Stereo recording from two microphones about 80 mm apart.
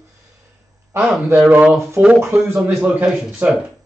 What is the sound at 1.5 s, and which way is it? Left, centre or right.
A man's voice, centre.